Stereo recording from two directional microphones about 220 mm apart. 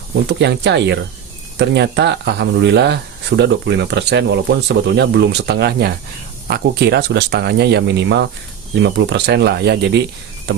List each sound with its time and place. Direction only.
0.3 s speech: 50° right (ahead or behind)